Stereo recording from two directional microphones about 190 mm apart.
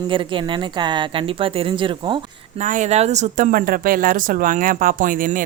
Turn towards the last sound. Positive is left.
turn(degrees=-45)  # may be behind; listen again after turning